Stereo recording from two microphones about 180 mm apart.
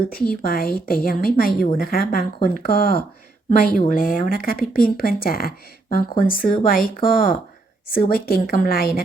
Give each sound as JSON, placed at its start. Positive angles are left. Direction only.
{"t": 0.1, "sound": "speech", "side_deg": 55}